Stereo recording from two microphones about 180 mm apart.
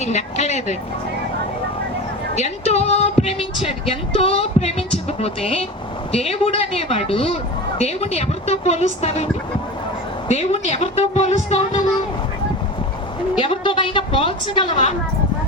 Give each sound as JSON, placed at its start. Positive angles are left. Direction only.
{"t": 0.0, "sound": "a woman's voice", "side_deg": 40}
{"t": 2.3, "sound": "a woman's voice", "side_deg": 40}
{"t": 10.2, "sound": "a woman's voice", "side_deg": 40}
{"t": 13.4, "sound": "a woman's voice", "side_deg": 30}